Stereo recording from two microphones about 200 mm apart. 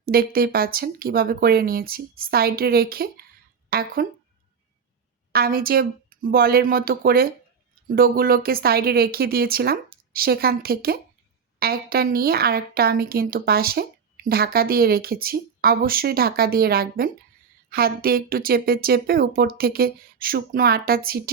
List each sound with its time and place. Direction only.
0.0 s a woman's voice: 50° right (ahead or behind)
5.3 s a woman's voice: 50° right (ahead or behind)